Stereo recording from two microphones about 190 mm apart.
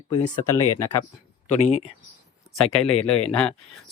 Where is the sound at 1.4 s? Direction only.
35° left (ahead or behind).